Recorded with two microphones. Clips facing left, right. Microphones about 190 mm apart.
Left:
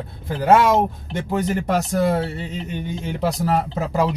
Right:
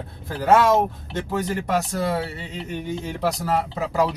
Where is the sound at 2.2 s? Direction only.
20° left (ahead or behind).